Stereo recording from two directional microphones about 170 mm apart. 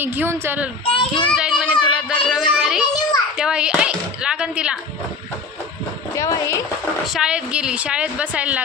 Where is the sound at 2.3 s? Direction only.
5° right (ahead or behind).